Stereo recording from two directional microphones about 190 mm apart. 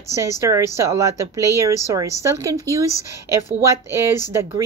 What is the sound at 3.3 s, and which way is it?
Speech, 15° right (ahead or behind).